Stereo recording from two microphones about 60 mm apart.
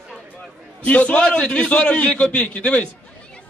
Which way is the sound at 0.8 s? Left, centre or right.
Left.